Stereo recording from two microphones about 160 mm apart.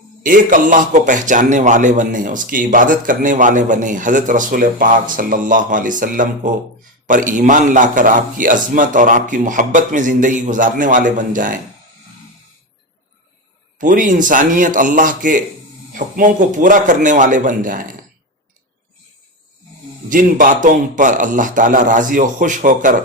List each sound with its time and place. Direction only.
0.2 s a man's voice: 55° right (ahead or behind)
13.7 s a man's voice: 55° right (ahead or behind)
20.1 s a man's voice: 55° right (ahead or behind)